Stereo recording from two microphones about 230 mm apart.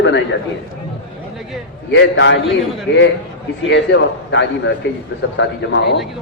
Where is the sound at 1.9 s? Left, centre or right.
Left.